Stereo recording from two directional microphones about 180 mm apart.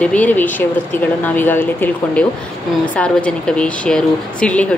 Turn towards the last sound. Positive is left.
turn(degrees=5)  # may be behind; listen again after turning